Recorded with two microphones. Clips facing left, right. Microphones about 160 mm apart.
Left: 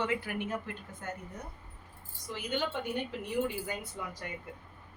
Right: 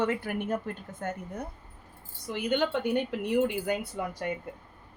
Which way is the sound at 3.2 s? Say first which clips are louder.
Right 6 dB; 70° right (ahead or behind).